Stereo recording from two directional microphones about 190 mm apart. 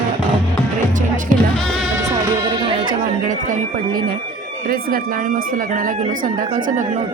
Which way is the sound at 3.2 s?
40° right (ahead or behind).